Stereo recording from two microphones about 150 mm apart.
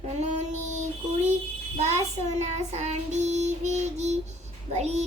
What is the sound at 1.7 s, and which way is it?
Child singing, 45° right (ahead or behind).